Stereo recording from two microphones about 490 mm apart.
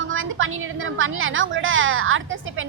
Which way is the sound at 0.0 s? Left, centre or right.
Right.